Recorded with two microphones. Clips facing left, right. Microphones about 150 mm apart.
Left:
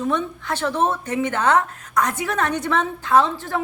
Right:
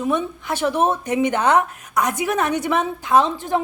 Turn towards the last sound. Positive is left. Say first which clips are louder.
# right 1 dB
turn(degrees=-20)  # may be behind; listen again after turning